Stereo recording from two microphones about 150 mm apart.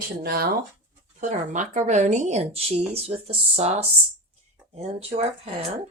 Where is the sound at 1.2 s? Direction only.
55° right (ahead or behind).